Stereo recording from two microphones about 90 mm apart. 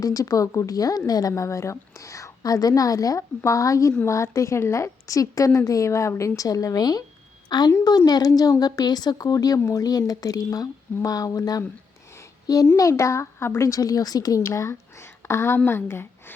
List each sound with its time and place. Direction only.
0.0 s a woman's voice: 40° left (ahead or behind)
1.3 s a woman's voice: 35° left (ahead or behind)
12.7 s a woman's voice: 35° left (ahead or behind)
14.4 s a woman's voice: 30° left (ahead or behind)